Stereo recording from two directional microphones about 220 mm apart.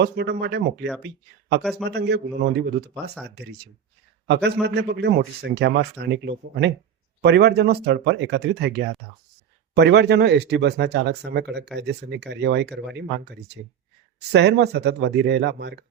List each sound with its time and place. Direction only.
0.0 s speech: 45° right (ahead or behind)
2.9 s speech: 5° left (ahead or behind)
4.6 s speech: 50° right (ahead or behind)
14.3 s speech: 50° right (ahead or behind)